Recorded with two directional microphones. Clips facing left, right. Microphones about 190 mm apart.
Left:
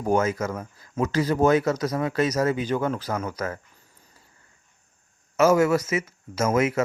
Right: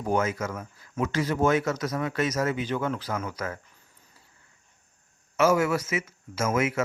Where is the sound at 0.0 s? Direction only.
40° left (ahead or behind).